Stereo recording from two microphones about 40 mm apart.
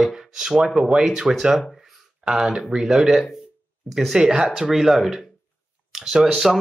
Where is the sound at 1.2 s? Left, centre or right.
Right; by 3.4 s centre.